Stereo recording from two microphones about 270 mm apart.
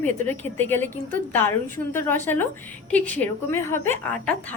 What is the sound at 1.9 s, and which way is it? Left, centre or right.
A woman's voice, centre.